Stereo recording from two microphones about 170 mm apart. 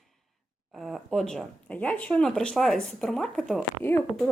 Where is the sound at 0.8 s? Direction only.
Centre (ahead or behind).